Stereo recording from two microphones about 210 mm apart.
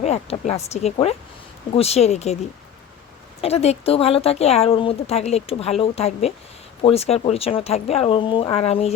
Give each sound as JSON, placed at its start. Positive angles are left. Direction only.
{"t": 0.0, "sound": "speech", "side_deg": 30}
{"t": 3.4, "sound": "speech", "side_deg": 30}